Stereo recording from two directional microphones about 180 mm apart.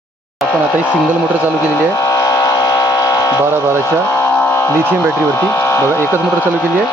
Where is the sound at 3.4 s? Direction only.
15° right (ahead or behind).